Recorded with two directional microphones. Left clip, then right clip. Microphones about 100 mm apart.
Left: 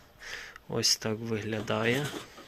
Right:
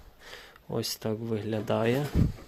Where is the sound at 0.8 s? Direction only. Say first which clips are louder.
Left 4 dB; 25° right (ahead or behind).